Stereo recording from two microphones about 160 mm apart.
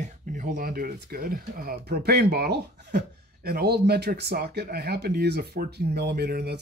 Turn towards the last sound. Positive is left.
turn(degrees=-90)